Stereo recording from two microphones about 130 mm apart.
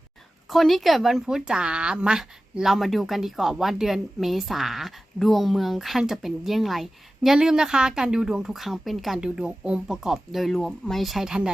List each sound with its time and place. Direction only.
0.5 s speech: centre (ahead or behind)